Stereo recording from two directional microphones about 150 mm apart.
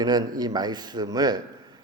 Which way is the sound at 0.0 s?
25° right (ahead or behind).